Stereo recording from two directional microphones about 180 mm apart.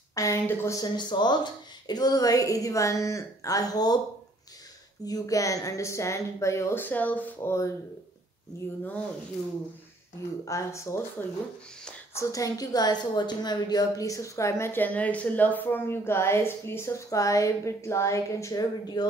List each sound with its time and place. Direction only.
0.1 s speech: 15° left (ahead or behind)
5.0 s a woman's voice: 20° left (ahead or behind)
10.4 s a woman's voice: 15° left (ahead or behind)